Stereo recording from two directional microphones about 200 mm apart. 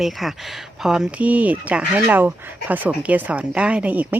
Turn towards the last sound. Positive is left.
turn(degrees=-5)  # may be behind; listen again after turning